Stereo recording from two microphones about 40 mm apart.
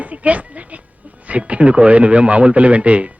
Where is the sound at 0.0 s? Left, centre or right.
Right.